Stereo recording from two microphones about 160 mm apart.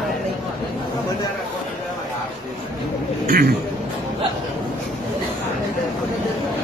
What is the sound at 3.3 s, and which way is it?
Speech, 90° right.